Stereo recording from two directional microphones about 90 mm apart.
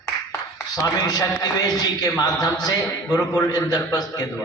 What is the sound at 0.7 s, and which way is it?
A man's voice, 45° left (ahead or behind).